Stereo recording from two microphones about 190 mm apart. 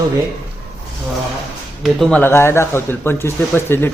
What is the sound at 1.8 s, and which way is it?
Speech, centre (ahead or behind).